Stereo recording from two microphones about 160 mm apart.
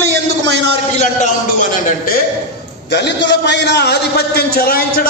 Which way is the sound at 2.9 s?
90° left.